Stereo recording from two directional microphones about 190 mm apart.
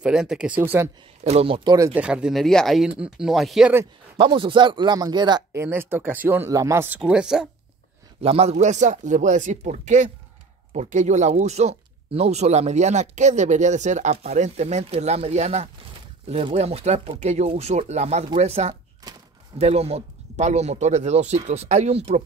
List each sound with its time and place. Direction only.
0.0 s speech: 5° right (ahead or behind)
1.2 s speech: 30° right (ahead or behind)
2.0 s speech: 5° right (ahead or behind)
4.2 s speech: 25° right (ahead or behind); by 7.4 s 5° right (ahead or behind)
8.2 s speech: 30° right (ahead or behind)